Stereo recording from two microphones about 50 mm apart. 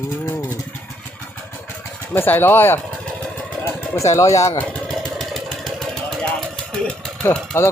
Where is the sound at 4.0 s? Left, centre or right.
Left.